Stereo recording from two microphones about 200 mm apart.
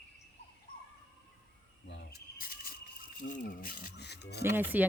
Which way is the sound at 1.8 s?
55° left (ahead or behind).